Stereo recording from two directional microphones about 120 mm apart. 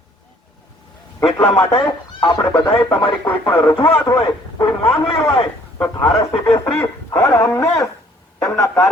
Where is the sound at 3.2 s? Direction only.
15° left (ahead or behind).